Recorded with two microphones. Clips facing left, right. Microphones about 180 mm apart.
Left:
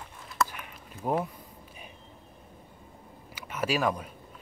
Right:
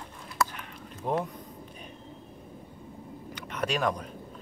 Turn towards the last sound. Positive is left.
turn(degrees=5)  # may be behind; listen again after turning